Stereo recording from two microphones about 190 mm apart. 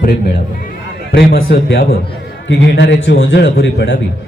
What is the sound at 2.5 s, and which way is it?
A man's voice, 65° left (ahead or behind).